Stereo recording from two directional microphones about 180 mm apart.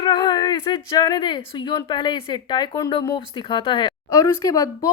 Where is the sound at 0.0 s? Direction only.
25° left (ahead or behind).